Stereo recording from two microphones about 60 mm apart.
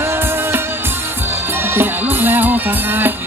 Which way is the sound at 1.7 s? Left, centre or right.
Right.